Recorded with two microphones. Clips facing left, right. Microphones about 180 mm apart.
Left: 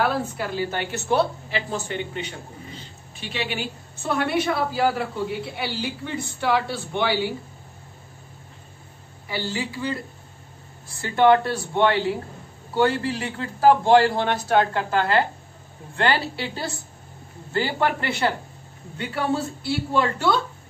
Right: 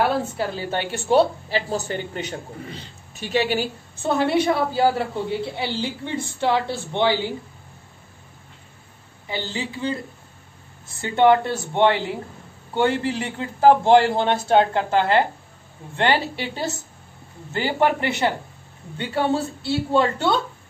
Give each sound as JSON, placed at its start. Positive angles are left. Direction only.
{"t": 0.4, "sound": "a woman's voice", "side_deg": -30}
{"t": 4.1, "sound": "a woman's voice", "side_deg": -25}
{"t": 9.3, "sound": "a woman's voice", "side_deg": -20}
{"t": 11.0, "sound": "a woman's voice", "side_deg": -20}
{"t": 18.9, "sound": "a woman's voice", "side_deg": -30}